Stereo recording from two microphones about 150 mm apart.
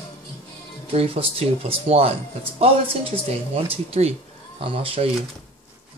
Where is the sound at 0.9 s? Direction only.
40° right (ahead or behind).